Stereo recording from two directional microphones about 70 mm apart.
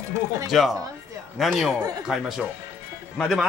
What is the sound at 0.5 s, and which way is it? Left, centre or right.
Speech, centre.